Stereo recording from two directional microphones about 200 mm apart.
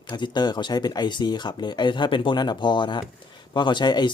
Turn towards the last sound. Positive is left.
turn(degrees=20)  # may be behind; listen again after turning